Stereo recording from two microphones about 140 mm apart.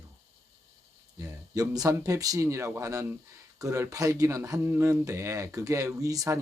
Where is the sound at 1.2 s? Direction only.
25° right (ahead or behind).